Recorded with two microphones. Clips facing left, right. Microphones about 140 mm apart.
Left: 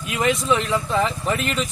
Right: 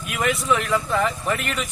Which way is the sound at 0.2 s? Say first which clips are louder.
Left 2 dB; 25° left (ahead or behind).